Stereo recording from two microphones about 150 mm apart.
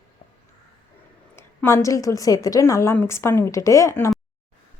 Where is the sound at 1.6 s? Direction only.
20° left (ahead or behind).